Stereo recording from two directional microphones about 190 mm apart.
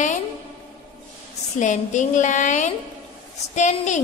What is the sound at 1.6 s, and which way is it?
A woman's voice, 40° left (ahead or behind).